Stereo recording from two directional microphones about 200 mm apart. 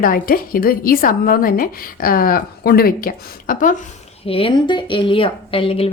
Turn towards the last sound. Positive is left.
turn(degrees=30)  # may be behind; listen again after turning